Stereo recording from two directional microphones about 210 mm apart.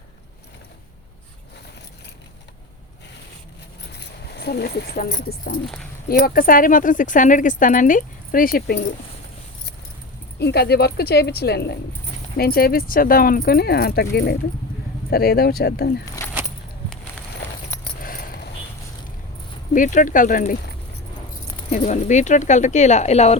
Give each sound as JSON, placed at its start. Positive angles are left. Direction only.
{"t": 3.9, "sound": "speech", "side_deg": 50}
{"t": 10.4, "sound": "speech", "side_deg": 50}
{"t": 18.0, "sound": "a sound", "side_deg": 40}
{"t": 19.7, "sound": "speech", "side_deg": 40}
{"t": 21.7, "sound": "speech", "side_deg": 35}